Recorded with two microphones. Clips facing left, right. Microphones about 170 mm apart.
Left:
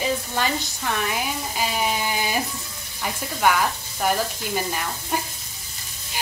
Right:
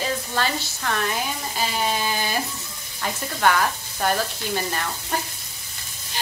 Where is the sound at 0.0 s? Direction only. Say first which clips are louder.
Left 1 dB; 15° left (ahead or behind).